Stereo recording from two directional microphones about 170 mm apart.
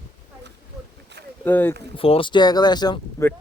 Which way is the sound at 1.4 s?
10° left (ahead or behind).